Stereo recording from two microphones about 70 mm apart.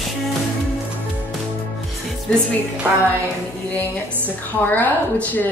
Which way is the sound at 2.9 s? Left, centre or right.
Centre.